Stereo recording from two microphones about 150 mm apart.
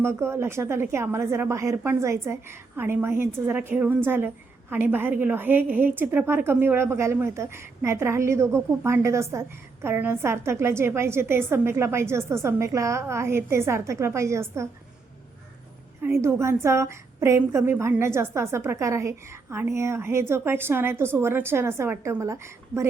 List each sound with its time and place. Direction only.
0.0 s a woman's voice: 15° right (ahead or behind)
16.0 s a woman's voice: 15° right (ahead or behind)